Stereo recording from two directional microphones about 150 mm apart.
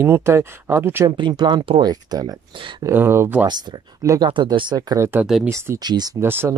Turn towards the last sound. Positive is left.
turn(degrees=-15)  # may be behind; listen again after turning